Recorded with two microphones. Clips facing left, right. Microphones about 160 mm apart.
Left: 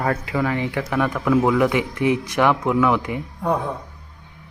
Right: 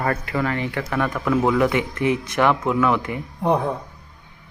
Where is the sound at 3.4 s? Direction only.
25° right (ahead or behind).